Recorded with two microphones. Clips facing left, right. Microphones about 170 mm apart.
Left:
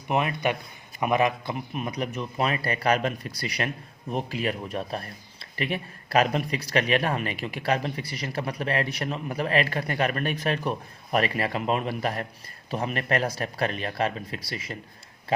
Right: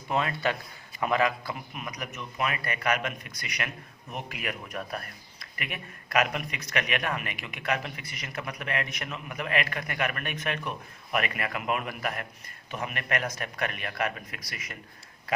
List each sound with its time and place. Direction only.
0.1 s a man's voice: 20° left (ahead or behind)